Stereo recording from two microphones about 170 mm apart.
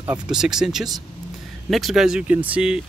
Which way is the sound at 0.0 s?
5° right (ahead or behind).